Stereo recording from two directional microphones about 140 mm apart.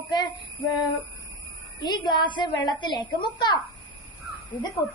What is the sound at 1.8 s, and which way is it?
A woman's voice, 30° left (ahead or behind).